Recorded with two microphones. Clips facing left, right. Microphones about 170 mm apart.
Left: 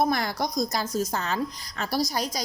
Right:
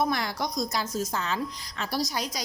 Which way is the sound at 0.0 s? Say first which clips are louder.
Left 3 dB; 45° left (ahead or behind).